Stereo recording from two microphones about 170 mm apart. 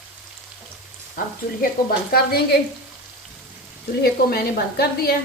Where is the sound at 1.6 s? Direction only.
60° left (ahead or behind).